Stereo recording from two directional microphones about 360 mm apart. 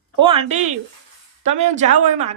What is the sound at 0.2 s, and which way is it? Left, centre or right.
A woman's voice, centre.